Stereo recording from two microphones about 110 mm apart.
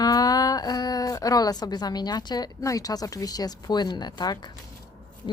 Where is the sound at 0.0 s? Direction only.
35° left (ahead or behind).